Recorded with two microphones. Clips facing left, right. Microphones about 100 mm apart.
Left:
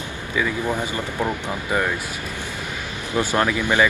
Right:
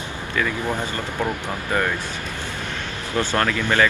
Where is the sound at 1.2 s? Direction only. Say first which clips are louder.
Even; 5° left (ahead or behind).